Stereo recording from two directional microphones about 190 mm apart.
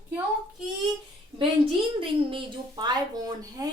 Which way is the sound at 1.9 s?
25° right (ahead or behind).